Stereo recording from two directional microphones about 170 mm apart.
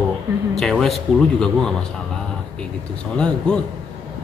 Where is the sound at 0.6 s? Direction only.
Centre (ahead or behind).